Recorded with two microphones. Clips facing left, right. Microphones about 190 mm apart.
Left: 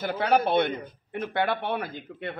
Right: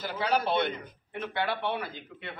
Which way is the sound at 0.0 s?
55° left (ahead or behind).